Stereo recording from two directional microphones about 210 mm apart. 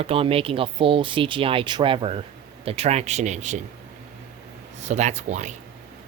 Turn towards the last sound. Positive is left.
turn(degrees=-35)  # may be behind; listen again after turning